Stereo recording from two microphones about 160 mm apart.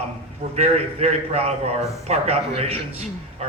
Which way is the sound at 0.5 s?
40° right (ahead or behind).